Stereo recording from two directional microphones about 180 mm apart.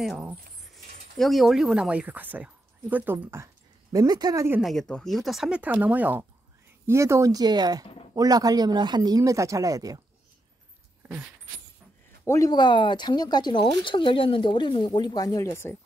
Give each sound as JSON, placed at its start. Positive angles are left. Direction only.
{"t": 0.0, "sound": "speech", "side_deg": -5}
{"t": 4.6, "sound": "speech", "side_deg": 0}
{"t": 11.0, "sound": "keys jangling", "side_deg": -10}
{"t": 12.3, "sound": "speech", "side_deg": 20}